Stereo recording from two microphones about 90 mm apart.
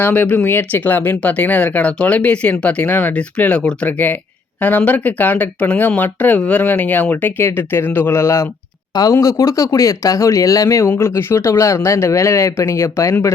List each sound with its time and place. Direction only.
0.0 s speech: 20° left (ahead or behind)